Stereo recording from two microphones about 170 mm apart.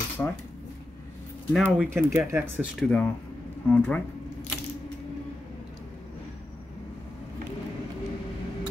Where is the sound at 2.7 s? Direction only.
10° left (ahead or behind).